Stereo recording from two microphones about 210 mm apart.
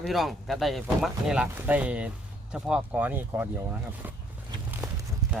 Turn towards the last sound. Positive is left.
turn(degrees=-10)  # may be behind; listen again after turning